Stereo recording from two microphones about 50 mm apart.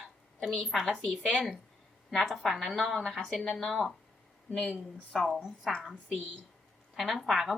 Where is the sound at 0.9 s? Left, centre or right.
Centre.